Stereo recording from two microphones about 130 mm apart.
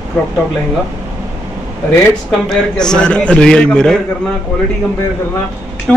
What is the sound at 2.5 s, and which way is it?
A man's voice, 5° left (ahead or behind).